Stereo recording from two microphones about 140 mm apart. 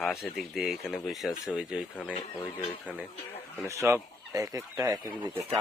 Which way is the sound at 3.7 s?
20° right (ahead or behind).